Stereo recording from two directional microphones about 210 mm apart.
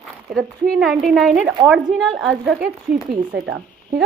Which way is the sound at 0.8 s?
Centre (ahead or behind).